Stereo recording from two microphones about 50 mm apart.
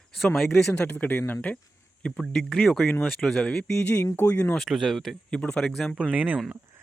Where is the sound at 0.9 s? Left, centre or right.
Left.